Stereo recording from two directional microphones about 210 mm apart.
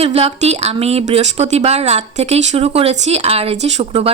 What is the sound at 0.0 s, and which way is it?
Speech, 30° right (ahead or behind).